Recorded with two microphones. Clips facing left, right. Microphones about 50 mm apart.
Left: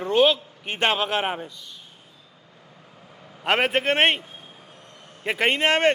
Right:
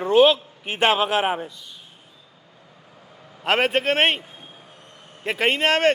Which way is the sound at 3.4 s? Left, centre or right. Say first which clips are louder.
Right 1 dB; centre.